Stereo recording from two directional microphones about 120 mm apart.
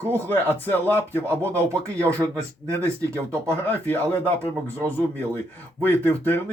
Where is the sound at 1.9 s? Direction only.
25° right (ahead or behind).